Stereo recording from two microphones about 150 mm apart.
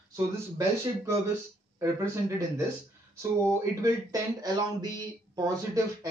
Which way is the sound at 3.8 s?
25° right (ahead or behind).